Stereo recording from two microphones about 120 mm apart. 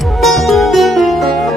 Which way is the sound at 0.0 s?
Centre (ahead or behind).